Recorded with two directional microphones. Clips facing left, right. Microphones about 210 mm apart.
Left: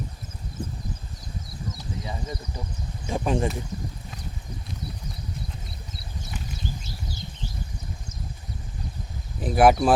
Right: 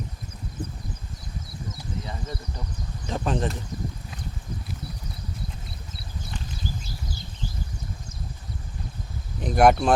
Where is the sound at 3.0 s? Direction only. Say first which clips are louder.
Left 2 dB; 10° left (ahead or behind).